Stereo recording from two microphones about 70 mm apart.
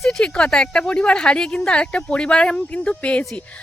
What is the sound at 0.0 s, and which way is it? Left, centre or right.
Speech, centre.